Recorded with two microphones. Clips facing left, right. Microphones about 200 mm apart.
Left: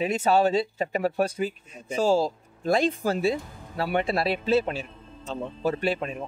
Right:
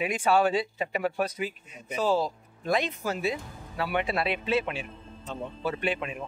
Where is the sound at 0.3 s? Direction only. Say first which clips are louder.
Left 2 dB; 35° left (ahead or behind).